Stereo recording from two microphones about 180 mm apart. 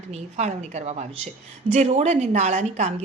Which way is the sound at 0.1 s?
40° right (ahead or behind).